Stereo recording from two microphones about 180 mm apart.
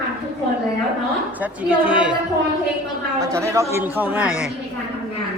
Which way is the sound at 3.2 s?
15° right (ahead or behind).